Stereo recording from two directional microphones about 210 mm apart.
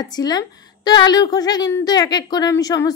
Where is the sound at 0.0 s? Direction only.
20° left (ahead or behind).